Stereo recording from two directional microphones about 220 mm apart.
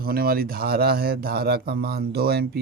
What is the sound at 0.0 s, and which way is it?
Speech, 40° right (ahead or behind).